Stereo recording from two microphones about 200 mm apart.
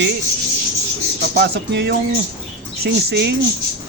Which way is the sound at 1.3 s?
65° right (ahead or behind).